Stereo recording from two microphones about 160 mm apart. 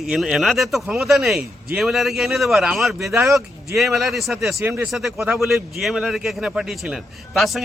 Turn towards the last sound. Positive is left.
turn(degrees=0)  # may be behind; listen again after turning